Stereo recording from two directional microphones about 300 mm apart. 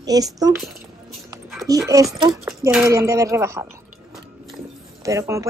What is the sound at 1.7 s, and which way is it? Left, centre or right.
A woman's voice, centre.